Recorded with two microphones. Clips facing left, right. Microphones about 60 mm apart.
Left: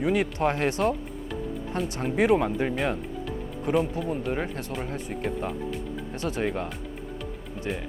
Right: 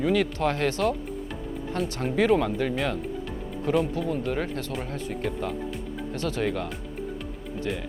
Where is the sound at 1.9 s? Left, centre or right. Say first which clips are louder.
Even; left.